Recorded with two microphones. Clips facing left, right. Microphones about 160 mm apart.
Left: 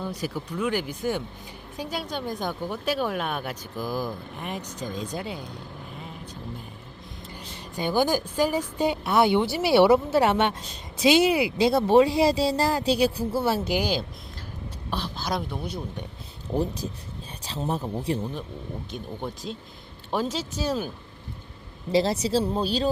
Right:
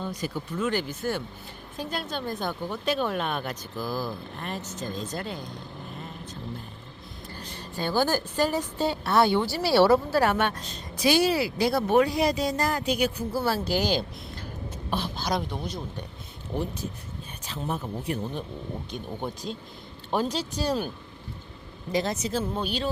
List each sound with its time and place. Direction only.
0.0 s speech: 10° left (ahead or behind); by 13.6 s 25° left (ahead or behind)
13.7 s speech: 10° left (ahead or behind)
17.4 s speech: 35° left (ahead or behind)
18.9 s speech: centre (ahead or behind)
21.9 s speech: 30° left (ahead or behind)